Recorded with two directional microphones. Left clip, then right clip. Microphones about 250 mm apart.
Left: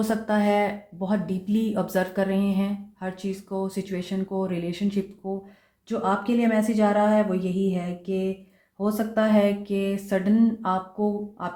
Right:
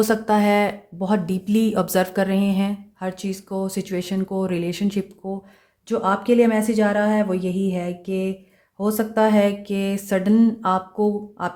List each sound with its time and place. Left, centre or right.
0.0 s speech: right